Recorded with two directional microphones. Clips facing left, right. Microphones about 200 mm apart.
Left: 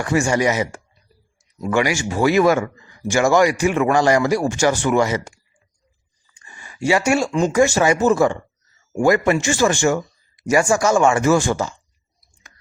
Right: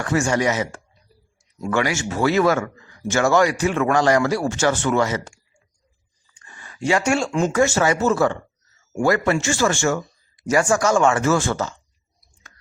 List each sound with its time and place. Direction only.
0.0 s speech: 10° left (ahead or behind)
6.3 s a sound: 10° left (ahead or behind)
7.5 s speech: 15° left (ahead or behind)